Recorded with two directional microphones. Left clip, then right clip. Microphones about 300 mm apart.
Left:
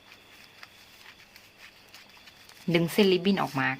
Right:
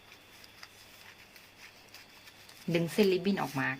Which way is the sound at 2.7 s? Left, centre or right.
Centre.